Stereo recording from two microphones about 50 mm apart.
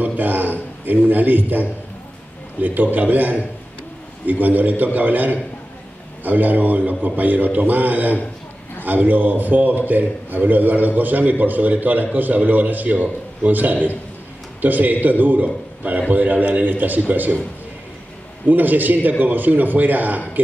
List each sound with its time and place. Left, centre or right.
0.0 s a sound: right
2.6 s a man's voice: right
18.5 s a man's voice: right